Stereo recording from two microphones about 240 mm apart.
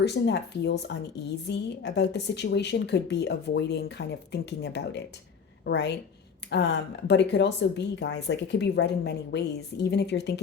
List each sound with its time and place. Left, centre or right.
0.0 s speech: left